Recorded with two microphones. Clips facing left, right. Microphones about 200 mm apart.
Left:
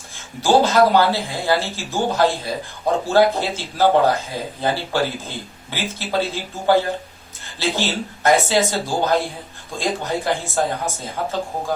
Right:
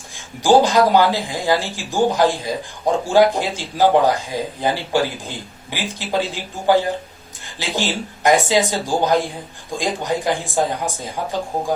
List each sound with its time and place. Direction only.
0.4 s speech: 15° right (ahead or behind)